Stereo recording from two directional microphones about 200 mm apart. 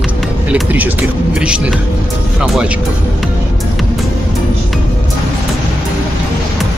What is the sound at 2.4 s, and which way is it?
Speech, centre (ahead or behind).